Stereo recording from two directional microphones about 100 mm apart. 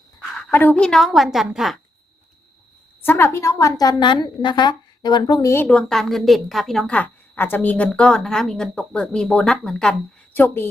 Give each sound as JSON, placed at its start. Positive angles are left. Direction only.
{"t": 0.5, "sound": "a woman's voice", "side_deg": 15}
{"t": 0.9, "sound": "a woman's voice", "side_deg": 0}
{"t": 3.0, "sound": "a woman's voice", "side_deg": 20}
{"t": 5.4, "sound": "a woman's voice", "side_deg": 30}
{"t": 5.6, "sound": "a woman's voice", "side_deg": 5}
{"t": 6.9, "sound": "a woman's voice", "side_deg": 20}